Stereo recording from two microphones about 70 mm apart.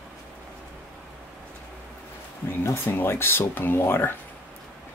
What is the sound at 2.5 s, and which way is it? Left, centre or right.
Speech, left.